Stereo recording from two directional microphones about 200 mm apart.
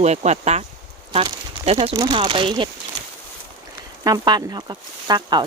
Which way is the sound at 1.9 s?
20° right (ahead or behind).